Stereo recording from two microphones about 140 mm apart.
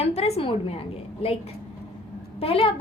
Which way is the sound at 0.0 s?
50° left (ahead or behind).